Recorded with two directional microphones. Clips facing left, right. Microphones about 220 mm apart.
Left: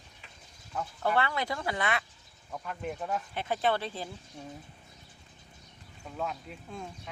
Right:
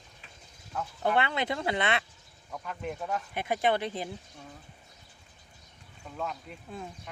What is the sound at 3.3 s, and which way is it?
Speech, 15° right (ahead or behind).